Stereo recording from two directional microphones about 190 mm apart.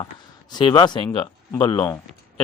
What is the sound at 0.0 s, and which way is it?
A man's voice, 20° left (ahead or behind).